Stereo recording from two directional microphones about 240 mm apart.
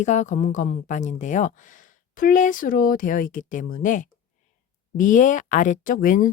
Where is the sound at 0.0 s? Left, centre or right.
Left.